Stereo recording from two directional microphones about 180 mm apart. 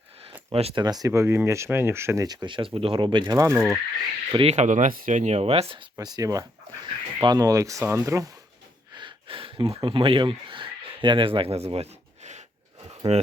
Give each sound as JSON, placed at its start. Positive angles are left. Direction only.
{"t": 0.5, "sound": "speech", "side_deg": -30}
{"t": 4.3, "sound": "speech", "side_deg": -30}
{"t": 8.9, "sound": "a sound", "side_deg": -25}
{"t": 13.1, "sound": "speech", "side_deg": -35}